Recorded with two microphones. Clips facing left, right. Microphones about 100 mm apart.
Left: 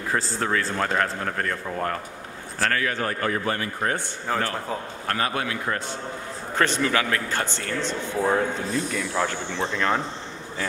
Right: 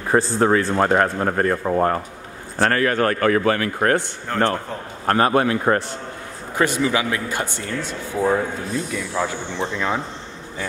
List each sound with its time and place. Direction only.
0.1 s speech: 30° right (ahead or behind)
2.6 s a man's voice: 45° right (ahead or behind)
3.1 s speech: 85° right
4.3 s a man's voice: 5° left (ahead or behind)
5.0 s speech: 40° right (ahead or behind)
6.5 s speech: 10° right (ahead or behind)